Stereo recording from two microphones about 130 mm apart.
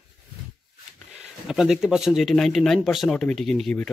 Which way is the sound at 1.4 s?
5° right (ahead or behind).